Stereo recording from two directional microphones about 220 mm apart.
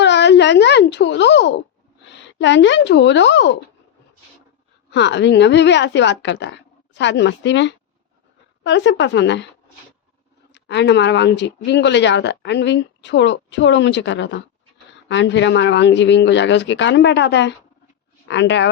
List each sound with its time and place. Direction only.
0.0 s speech: 50° left (ahead or behind)
4.9 s a woman's voice: 50° left (ahead or behind)
10.5 s a woman's voice: 50° left (ahead or behind)